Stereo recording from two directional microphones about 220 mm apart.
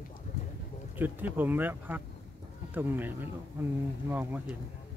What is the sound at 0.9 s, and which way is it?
Speech, 10° right (ahead or behind).